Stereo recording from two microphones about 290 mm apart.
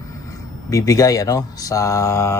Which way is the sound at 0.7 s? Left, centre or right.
Centre.